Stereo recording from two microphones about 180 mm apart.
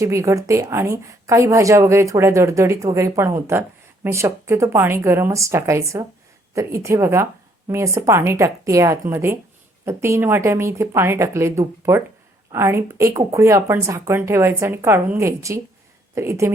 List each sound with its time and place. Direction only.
0.0 s a woman's voice: 15° right (ahead or behind)